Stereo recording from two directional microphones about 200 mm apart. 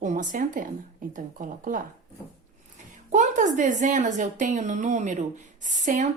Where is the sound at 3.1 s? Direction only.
40° right (ahead or behind).